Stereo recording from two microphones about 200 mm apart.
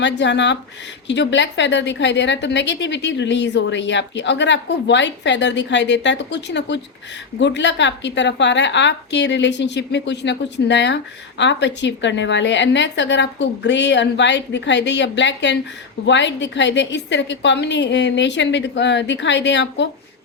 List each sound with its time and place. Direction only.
0.0 s a woman's voice: 60° left (ahead or behind)